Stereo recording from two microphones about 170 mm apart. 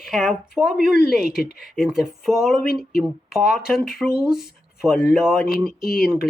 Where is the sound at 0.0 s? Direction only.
Centre (ahead or behind).